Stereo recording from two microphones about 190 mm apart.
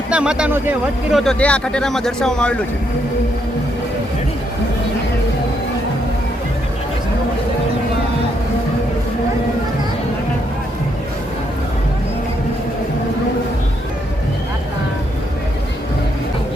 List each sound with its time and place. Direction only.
0.1 s speech: 5° right (ahead or behind)